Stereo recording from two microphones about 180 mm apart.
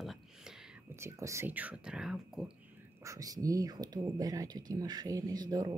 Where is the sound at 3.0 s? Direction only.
20° right (ahead or behind).